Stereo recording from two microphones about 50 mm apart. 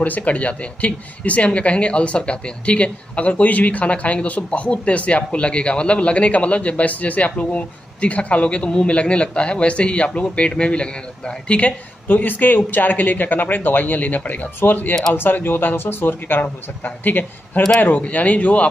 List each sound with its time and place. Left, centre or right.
0.0 s speech: left
12.1 s speech: left
17.7 s speech: left